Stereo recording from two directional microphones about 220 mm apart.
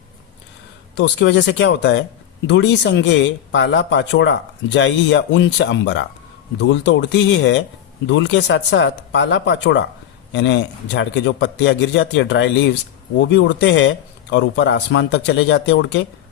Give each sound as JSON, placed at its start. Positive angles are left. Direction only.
{"t": 0.9, "sound": "speech", "side_deg": 55}